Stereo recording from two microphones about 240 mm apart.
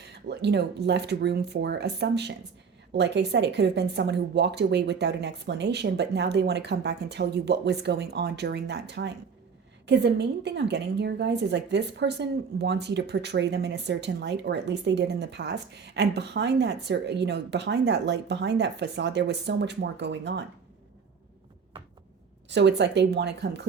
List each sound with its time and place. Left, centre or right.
0.0 s a woman's voice: right
22.4 s a woman's voice: right